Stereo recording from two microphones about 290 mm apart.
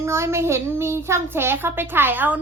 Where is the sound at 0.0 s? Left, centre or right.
Centre.